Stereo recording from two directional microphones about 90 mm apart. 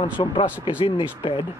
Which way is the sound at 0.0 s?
65° left (ahead or behind).